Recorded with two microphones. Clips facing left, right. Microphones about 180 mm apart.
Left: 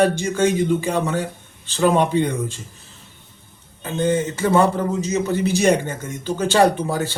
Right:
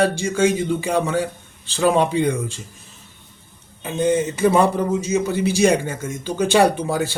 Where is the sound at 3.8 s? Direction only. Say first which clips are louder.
Right 1 dB; 15° right (ahead or behind).